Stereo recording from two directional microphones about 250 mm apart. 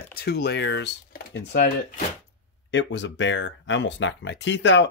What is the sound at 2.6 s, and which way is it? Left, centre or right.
Speech, left.